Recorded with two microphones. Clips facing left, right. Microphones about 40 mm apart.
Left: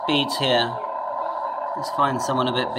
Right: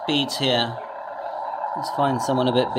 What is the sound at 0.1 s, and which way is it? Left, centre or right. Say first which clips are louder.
Speech: left 1 dB; centre.